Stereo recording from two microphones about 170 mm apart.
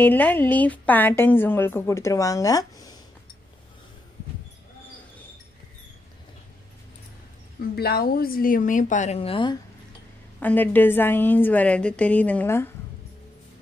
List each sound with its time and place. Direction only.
0.0 s a woman's voice: 10° left (ahead or behind)
7.7 s a woman's voice: 65° left (ahead or behind); by 9.6 s 30° left (ahead or behind)
10.4 s a woman's voice: 10° left (ahead or behind)